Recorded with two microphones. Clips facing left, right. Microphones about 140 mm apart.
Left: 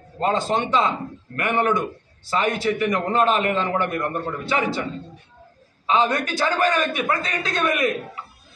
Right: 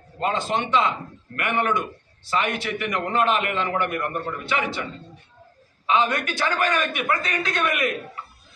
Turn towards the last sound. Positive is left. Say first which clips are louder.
# left 2 dB
turn(degrees=30)  # may be behind; listen again after turning